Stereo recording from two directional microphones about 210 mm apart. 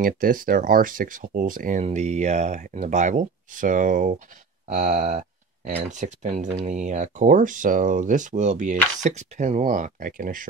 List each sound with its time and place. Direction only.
0.0 s speech: 40° right (ahead or behind)